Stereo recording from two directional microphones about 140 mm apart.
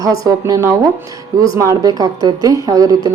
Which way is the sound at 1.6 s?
25° right (ahead or behind).